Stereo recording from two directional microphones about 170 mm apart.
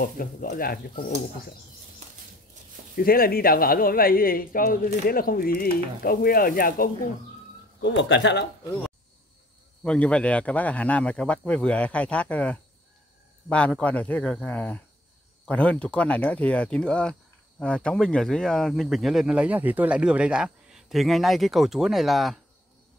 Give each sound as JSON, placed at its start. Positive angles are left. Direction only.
{"t": 0.0, "sound": "a woman's voice", "side_deg": 60}
{"t": 3.0, "sound": "a woman's voice", "side_deg": 60}
{"t": 7.8, "sound": "speech", "side_deg": 90}
{"t": 9.8, "sound": "speech", "side_deg": 5}